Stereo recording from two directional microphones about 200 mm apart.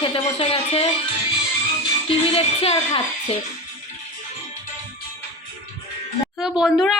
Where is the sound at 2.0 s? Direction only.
30° left (ahead or behind).